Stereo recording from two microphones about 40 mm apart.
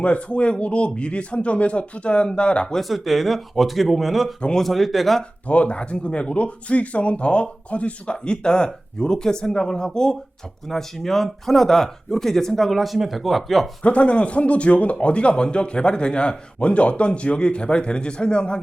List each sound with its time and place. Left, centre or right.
0.0 s speech: left
2.7 s speech: centre
5.5 s speech: left
10.7 s speech: centre
13.8 s speech: left